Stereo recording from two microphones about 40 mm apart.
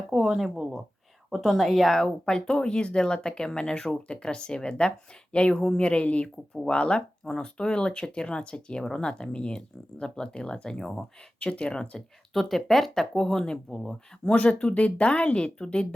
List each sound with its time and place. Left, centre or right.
0.1 s a woman's voice: centre
2.0 s speech: centre
11.3 s speech: left
12.3 s speech: centre
14.3 s speech: left